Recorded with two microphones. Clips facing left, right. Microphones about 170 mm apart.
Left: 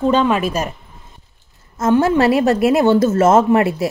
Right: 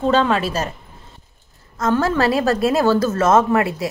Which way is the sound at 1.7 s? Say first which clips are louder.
Left 4 dB; 25° left (ahead or behind).